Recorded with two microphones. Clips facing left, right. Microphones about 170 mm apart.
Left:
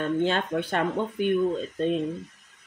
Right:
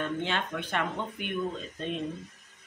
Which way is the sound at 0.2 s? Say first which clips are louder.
Left 7 dB; 40° left (ahead or behind).